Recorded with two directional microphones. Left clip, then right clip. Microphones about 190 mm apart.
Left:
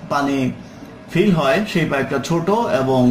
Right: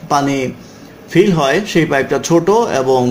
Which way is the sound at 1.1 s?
40° right (ahead or behind).